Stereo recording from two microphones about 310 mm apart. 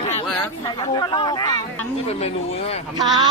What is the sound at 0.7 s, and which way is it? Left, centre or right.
Speech, centre.